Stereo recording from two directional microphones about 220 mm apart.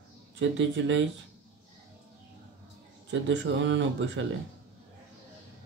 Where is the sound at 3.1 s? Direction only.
55° right (ahead or behind).